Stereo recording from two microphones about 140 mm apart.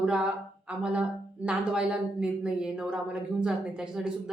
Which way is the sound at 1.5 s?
5° right (ahead or behind).